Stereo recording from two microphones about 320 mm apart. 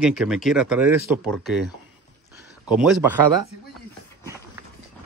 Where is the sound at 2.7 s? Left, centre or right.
Centre.